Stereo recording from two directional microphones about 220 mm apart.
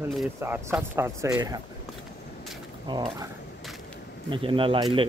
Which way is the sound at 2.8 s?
20° right (ahead or behind).